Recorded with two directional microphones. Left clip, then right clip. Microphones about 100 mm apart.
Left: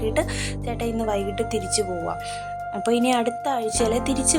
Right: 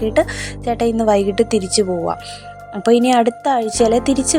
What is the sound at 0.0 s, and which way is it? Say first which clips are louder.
Speech: right 7 dB; 35° right (ahead or behind).